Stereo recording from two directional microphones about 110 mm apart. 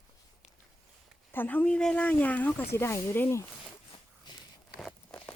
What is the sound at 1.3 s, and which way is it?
Speech, 15° left (ahead or behind).